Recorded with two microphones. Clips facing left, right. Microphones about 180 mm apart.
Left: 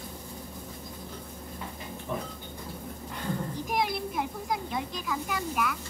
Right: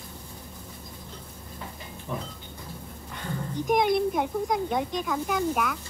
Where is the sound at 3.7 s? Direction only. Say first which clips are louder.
Right 9 dB; centre (ahead or behind).